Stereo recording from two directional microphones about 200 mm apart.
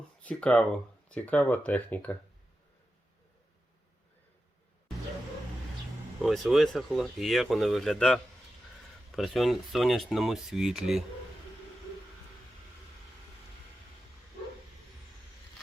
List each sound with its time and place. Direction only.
0.2 s speech: 5° left (ahead or behind)
6.2 s speech: centre (ahead or behind)